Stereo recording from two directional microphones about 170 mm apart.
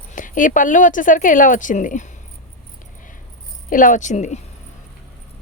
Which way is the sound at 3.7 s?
50° left (ahead or behind).